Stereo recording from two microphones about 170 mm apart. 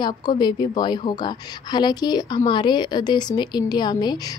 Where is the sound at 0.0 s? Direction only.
25° left (ahead or behind).